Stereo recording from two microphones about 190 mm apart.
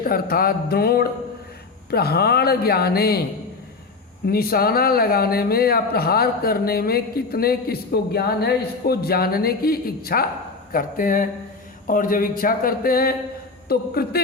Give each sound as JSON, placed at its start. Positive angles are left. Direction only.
{"t": 0.0, "sound": "speech", "side_deg": 50}
{"t": 4.3, "sound": "speech", "side_deg": 50}